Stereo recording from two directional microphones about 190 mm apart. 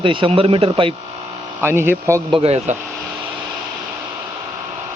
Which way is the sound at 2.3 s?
30° right (ahead or behind).